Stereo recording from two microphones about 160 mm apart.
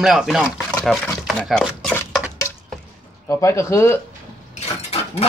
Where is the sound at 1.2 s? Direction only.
Centre (ahead or behind).